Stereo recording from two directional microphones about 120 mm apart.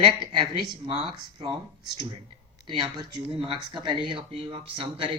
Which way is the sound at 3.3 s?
45° right (ahead or behind).